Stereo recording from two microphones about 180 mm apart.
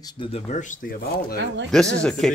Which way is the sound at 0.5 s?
45° left (ahead or behind).